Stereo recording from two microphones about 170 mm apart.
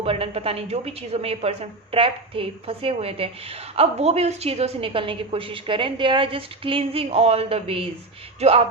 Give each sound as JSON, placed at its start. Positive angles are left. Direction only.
{"t": 0.0, "sound": "a woman's voice", "side_deg": -35}